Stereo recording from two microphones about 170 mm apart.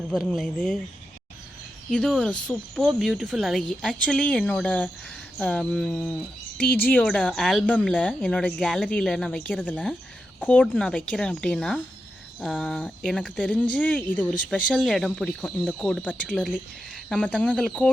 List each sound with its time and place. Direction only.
0.1 s speech: centre (ahead or behind)
1.9 s speech: 5° left (ahead or behind)